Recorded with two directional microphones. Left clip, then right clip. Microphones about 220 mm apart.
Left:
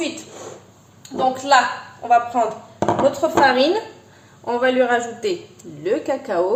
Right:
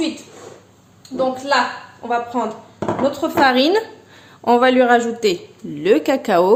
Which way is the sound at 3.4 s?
50° right (ahead or behind).